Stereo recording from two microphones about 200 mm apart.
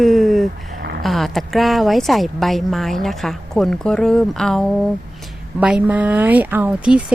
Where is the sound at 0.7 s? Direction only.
50° right (ahead or behind).